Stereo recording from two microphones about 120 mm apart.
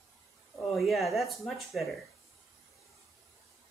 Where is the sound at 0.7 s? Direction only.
Centre (ahead or behind).